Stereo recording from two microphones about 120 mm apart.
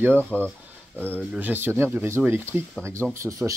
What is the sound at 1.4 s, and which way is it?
Speech, 15° right (ahead or behind).